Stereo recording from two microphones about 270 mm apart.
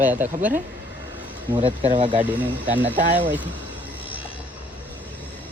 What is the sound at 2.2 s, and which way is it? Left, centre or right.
Speech, centre.